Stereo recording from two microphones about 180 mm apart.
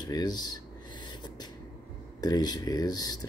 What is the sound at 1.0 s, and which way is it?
Beatboxing, 25° left (ahead or behind).